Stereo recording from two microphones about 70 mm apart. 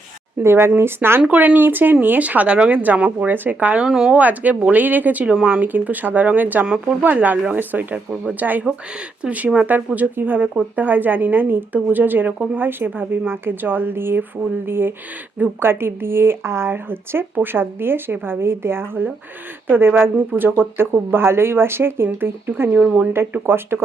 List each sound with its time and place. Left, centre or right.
0.4 s speech: right
1.3 s a woman's voice: right
3.8 s speech: centre
4.2 s a woman's voice: right